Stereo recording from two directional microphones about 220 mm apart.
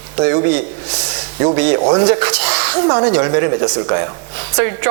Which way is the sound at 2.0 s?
10° right (ahead or behind).